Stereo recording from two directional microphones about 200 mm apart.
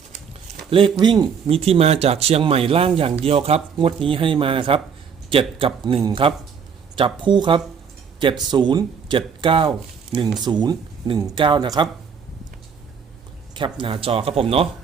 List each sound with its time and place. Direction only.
0.7 s speech: 25° right (ahead or behind)
13.5 s speech: 25° right (ahead or behind)